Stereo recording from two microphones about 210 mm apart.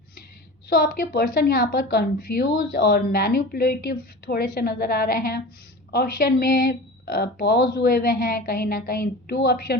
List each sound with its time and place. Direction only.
0.7 s a woman's voice: 45° left (ahead or behind)